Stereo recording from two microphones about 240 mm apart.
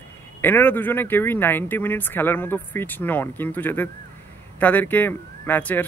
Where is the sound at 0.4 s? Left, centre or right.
Centre.